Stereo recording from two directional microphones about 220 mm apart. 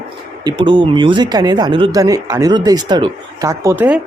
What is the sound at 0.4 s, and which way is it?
Speech, 20° right (ahead or behind).